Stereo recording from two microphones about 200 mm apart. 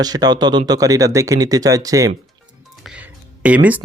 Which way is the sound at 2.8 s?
5° right (ahead or behind).